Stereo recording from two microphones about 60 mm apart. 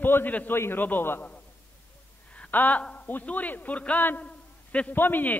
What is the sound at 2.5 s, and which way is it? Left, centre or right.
A man's voice, left.